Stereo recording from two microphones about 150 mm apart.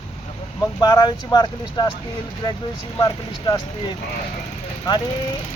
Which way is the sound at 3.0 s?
25° left (ahead or behind).